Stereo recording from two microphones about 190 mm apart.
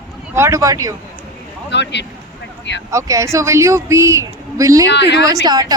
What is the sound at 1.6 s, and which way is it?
Speech, 65° left (ahead or behind).